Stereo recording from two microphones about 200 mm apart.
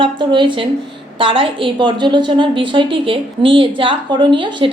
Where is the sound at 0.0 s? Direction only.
25° right (ahead or behind).